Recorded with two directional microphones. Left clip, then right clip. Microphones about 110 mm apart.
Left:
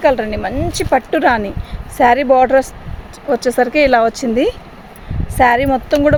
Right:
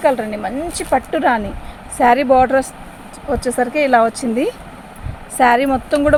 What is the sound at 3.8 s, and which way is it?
Speech, 90° left.